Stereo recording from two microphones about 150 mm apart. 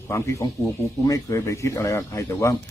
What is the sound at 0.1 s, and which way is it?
Speech, 20° left (ahead or behind).